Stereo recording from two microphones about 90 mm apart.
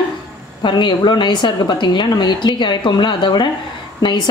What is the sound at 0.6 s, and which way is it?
A woman's voice, 55° left (ahead or behind).